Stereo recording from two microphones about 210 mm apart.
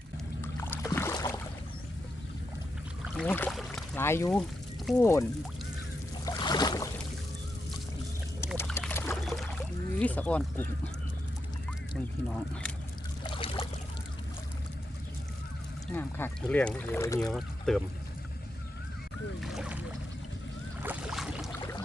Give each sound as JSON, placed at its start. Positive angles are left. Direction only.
{"t": 0.4, "sound": "boat", "side_deg": 10}
{"t": 3.2, "sound": "speech", "side_deg": 10}
{"t": 6.2, "sound": "boat", "side_deg": 20}
{"t": 8.5, "sound": "a sound", "side_deg": 10}
{"t": 8.8, "sound": "pour", "side_deg": 10}
{"t": 9.2, "sound": "rowboat", "side_deg": 0}
{"t": 10.0, "sound": "speech", "side_deg": 5}
{"t": 11.9, "sound": "speech", "side_deg": 5}
{"t": 13.2, "sound": "pour", "side_deg": 25}
{"t": 15.9, "sound": "speech", "side_deg": 10}
{"t": 17.3, "sound": "speech", "side_deg": 0}
{"t": 19.4, "sound": "boat", "side_deg": 0}
{"t": 20.8, "sound": "boat", "side_deg": -5}